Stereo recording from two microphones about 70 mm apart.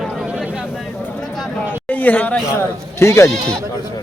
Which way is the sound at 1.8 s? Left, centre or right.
Left.